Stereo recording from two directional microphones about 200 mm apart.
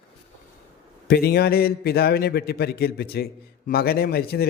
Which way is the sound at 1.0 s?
55° left (ahead or behind).